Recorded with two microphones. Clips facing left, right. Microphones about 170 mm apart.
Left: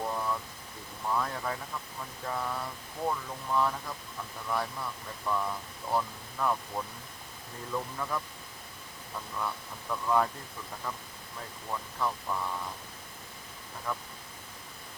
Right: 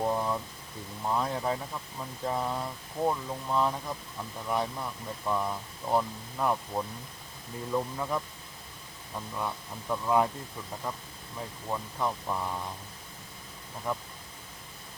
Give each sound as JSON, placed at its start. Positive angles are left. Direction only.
{"t": 0.0, "sound": "a sound", "side_deg": -25}
{"t": 1.0, "sound": "speech", "side_deg": -20}
{"t": 9.9, "sound": "speech", "side_deg": -20}
{"t": 13.9, "sound": "speech", "side_deg": -20}